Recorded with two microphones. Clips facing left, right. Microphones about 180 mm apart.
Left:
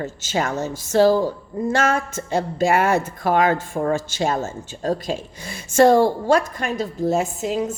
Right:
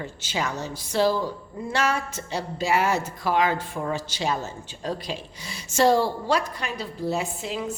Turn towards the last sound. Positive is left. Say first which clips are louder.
# left 7 dB
turn(degrees=45)  # may be behind; listen again after turning